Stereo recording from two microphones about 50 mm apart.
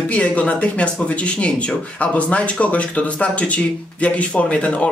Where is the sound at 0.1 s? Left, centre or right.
Left.